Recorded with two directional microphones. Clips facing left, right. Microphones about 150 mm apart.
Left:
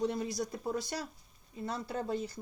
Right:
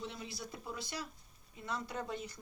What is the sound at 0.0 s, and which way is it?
Speech, 45° left (ahead or behind).